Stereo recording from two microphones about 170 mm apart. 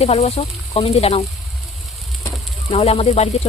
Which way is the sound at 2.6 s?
35° left (ahead or behind).